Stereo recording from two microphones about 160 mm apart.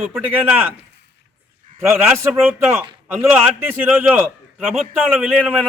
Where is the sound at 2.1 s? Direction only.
15° right (ahead or behind).